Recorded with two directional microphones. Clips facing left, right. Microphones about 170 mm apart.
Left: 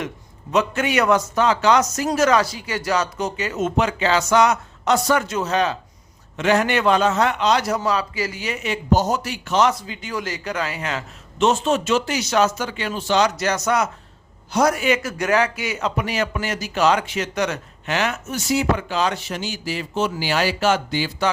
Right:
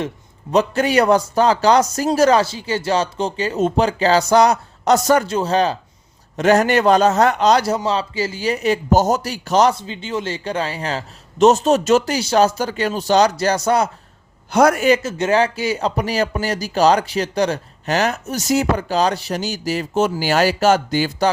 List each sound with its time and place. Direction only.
0.5 s speech: 35° right (ahead or behind)
9.7 s speech: 25° right (ahead or behind)
14.5 s a man's voice: 55° right (ahead or behind)
14.8 s speech: 30° right (ahead or behind)